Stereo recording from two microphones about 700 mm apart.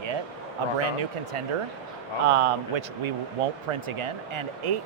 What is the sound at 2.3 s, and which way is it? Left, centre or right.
Speech, right.